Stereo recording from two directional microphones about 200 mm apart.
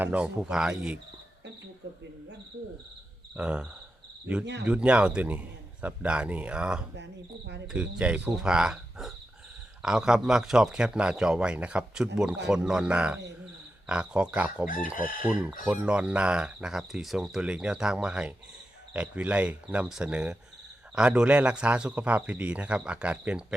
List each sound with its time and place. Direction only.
0.0 s speech: 5° right (ahead or behind)
3.3 s speech: 5° right (ahead or behind)
6.9 s speech: 60° right (ahead or behind)
7.7 s speech: 5° right (ahead or behind)
14.9 s chicken: 45° left (ahead or behind)
15.2 s speech: 5° right (ahead or behind)